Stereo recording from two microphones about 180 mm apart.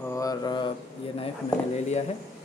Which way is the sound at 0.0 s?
20° left (ahead or behind).